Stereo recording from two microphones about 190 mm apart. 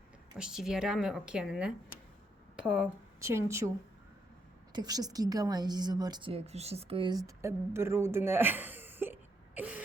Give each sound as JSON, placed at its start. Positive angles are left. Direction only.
{"t": 0.3, "sound": "a woman's voice", "side_deg": -5}
{"t": 4.7, "sound": "a woman's voice", "side_deg": -20}
{"t": 9.6, "sound": "throat clearing", "side_deg": -10}